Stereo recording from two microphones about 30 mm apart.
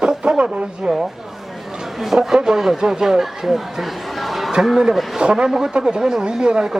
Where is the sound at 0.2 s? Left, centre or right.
Right.